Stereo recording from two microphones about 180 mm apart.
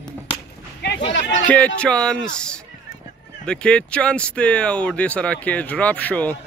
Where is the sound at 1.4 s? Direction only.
5° left (ahead or behind).